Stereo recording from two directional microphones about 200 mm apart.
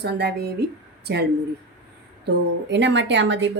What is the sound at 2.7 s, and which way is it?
Speech, 60° right (ahead or behind).